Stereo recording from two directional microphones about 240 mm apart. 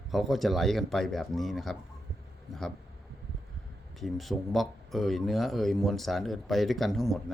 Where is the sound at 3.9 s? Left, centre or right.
Centre.